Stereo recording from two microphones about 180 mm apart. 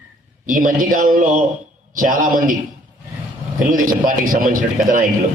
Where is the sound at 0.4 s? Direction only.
50° right (ahead or behind).